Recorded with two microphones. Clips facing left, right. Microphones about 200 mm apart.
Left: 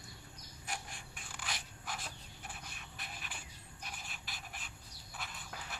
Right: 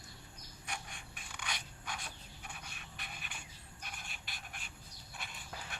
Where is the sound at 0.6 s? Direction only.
Centre (ahead or behind).